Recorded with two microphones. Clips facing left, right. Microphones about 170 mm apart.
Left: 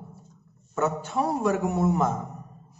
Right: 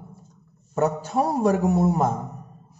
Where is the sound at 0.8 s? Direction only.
35° right (ahead or behind).